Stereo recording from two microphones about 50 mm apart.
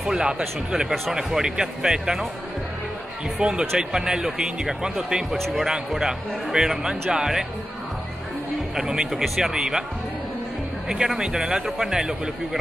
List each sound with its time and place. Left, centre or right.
0.0 s speech: centre
3.3 s speech: centre
8.7 s speech: centre
11.1 s speech: centre